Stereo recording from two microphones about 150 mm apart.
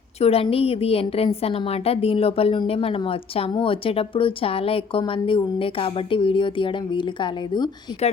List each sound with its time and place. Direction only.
0.2 s a woman's voice: 40° left (ahead or behind)